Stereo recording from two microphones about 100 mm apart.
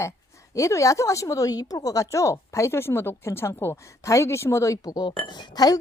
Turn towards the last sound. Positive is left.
turn(degrees=40)  # may be behind; listen again after turning